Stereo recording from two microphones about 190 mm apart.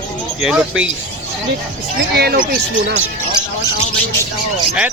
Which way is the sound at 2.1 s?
55° right (ahead or behind).